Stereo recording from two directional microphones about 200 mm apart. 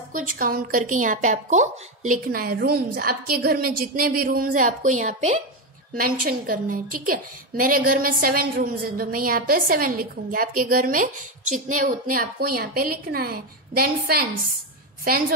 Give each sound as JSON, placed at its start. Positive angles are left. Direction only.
{"t": 0.1, "sound": "a woman's voice", "side_deg": -45}